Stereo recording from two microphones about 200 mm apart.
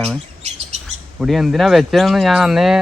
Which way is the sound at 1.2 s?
Centre (ahead or behind).